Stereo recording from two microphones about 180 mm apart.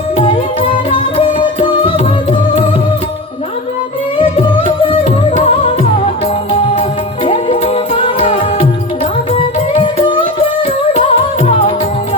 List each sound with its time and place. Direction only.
0.9 s music: 40° left (ahead or behind)
1.4 s music: 25° left (ahead or behind)
4.2 s music: 25° left (ahead or behind)
7.4 s music: 35° left (ahead or behind)